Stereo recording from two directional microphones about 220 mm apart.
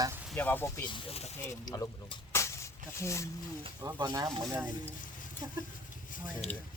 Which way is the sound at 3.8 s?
15° right (ahead or behind).